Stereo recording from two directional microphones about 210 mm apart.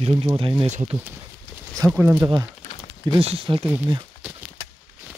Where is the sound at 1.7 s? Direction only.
15° right (ahead or behind).